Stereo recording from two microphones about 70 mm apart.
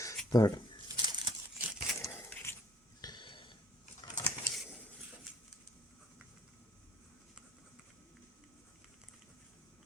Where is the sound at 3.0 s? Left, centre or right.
Left.